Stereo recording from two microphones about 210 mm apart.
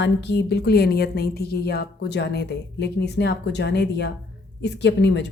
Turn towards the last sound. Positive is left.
turn(degrees=55)  # may be behind; listen again after turning